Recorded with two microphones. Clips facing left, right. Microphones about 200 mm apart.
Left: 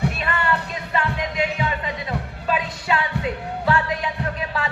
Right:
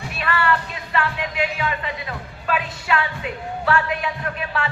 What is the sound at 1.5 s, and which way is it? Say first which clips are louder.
Music: left 1 dB; 25° left (ahead or behind).